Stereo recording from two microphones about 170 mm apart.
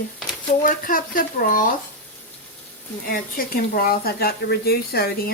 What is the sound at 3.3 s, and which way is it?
Speech, 60° left (ahead or behind).